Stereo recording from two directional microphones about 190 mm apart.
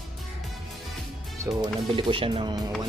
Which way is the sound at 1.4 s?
25° right (ahead or behind).